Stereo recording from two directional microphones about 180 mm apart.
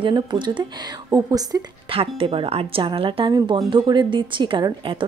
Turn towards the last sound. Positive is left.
turn(degrees=-25)  # may be behind; listen again after turning